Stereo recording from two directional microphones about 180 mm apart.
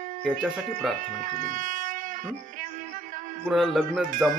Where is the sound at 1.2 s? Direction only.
45° right (ahead or behind).